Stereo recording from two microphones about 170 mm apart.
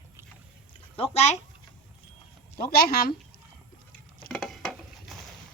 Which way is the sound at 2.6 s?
65° left (ahead or behind).